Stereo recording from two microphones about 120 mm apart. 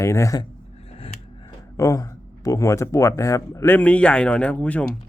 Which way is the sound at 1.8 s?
30° left (ahead or behind).